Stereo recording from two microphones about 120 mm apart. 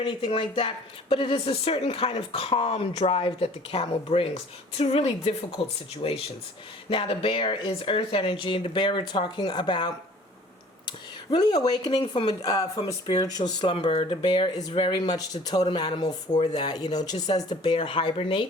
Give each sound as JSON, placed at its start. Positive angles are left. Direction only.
{"t": 0.0, "sound": "a woman's voice", "side_deg": 45}
{"t": 13.9, "sound": "speech", "side_deg": 55}
{"t": 17.7, "sound": "speech", "side_deg": 50}